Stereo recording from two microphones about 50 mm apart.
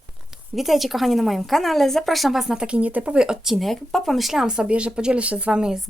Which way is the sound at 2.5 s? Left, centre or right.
Centre.